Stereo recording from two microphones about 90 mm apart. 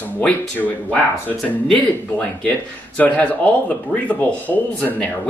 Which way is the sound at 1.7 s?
10° left (ahead or behind).